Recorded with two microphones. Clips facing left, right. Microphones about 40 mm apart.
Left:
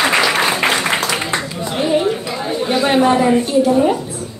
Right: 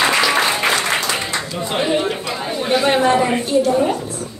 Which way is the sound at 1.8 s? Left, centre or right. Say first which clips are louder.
Left 4 dB; centre.